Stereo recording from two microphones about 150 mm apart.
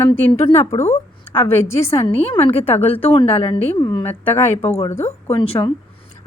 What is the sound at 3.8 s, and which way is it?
Speech, 30° left (ahead or behind).